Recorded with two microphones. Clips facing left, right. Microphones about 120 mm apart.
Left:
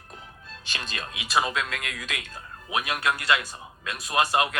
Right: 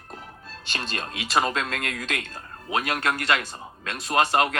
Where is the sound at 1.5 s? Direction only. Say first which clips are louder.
Right 2 dB; 35° right (ahead or behind).